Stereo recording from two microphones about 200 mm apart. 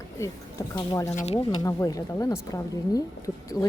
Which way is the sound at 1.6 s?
15° left (ahead or behind).